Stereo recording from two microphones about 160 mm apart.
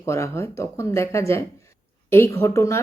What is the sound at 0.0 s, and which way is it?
A woman's voice, 20° left (ahead or behind).